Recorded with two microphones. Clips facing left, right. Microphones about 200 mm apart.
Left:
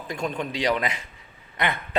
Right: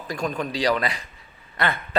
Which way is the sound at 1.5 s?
20° left (ahead or behind).